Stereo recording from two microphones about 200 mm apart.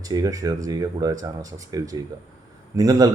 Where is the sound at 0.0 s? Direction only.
15° right (ahead or behind).